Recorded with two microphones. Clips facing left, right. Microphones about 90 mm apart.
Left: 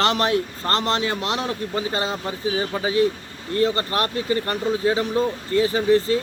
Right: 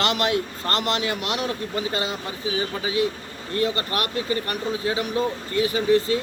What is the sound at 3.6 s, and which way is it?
A man's voice, 30° left (ahead or behind).